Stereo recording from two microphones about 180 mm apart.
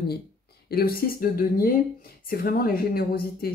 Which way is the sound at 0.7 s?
60° left (ahead or behind).